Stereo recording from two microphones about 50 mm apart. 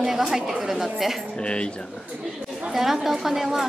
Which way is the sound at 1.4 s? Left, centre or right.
Centre.